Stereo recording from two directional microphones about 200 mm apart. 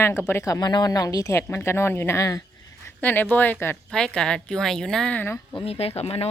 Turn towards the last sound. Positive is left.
turn(degrees=30)  # may be behind; listen again after turning